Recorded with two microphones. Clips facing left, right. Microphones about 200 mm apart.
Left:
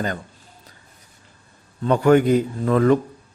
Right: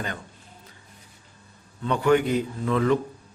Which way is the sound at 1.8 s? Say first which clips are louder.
Left 5 dB; 45° left (ahead or behind).